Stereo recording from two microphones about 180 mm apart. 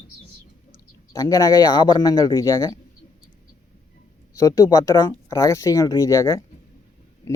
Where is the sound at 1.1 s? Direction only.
20° left (ahead or behind).